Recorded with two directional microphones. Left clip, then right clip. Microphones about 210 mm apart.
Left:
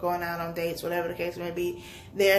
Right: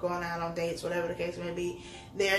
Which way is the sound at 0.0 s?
50° left (ahead or behind).